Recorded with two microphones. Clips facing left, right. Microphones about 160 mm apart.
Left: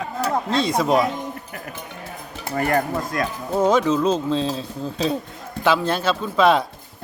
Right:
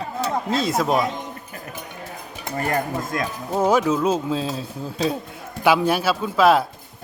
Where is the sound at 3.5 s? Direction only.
10° right (ahead or behind).